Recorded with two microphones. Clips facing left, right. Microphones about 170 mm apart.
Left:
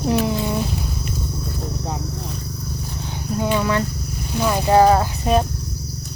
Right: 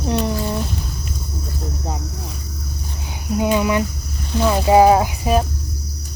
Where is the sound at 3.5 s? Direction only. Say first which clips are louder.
Right 2 dB; 15° right (ahead or behind).